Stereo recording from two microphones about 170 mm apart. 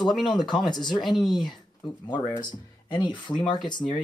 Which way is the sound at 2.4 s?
25° left (ahead or behind).